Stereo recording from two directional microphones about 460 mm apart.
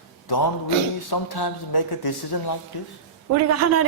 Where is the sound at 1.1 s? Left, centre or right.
Left.